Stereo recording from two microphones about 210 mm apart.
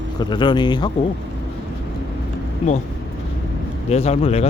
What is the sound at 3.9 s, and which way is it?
Speech, 30° left (ahead or behind).